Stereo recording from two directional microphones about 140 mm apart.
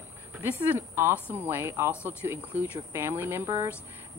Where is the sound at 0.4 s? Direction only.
15° right (ahead or behind).